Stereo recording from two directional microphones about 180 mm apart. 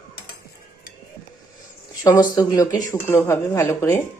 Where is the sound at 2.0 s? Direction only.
20° left (ahead or behind).